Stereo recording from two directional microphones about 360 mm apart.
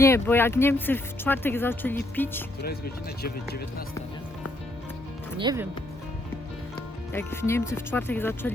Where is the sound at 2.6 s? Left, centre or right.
Left.